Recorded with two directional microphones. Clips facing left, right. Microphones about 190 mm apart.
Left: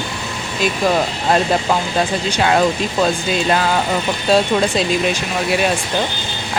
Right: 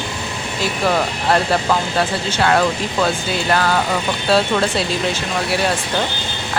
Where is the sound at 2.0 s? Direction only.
15° left (ahead or behind).